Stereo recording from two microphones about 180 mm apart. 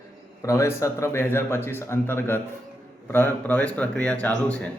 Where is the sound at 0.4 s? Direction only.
15° left (ahead or behind).